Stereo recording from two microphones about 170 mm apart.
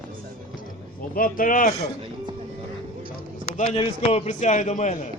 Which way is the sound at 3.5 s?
45° left (ahead or behind).